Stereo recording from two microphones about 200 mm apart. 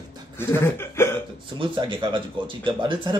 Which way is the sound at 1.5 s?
25° right (ahead or behind).